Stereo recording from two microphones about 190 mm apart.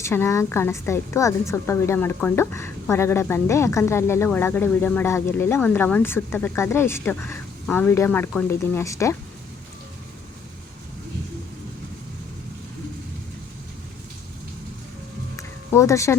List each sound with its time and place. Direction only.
0.0 s a woman's voice: 15° left (ahead or behind)
15.4 s music: 15° left (ahead or behind)